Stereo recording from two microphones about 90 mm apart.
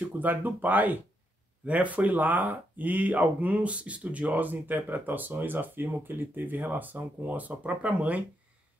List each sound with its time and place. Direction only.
0.2 s speech: 20° right (ahead or behind)